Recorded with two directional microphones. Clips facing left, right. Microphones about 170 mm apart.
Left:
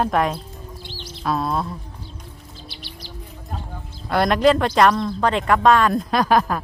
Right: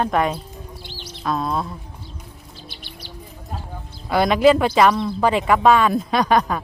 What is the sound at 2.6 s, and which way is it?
Bird, 50° right (ahead or behind).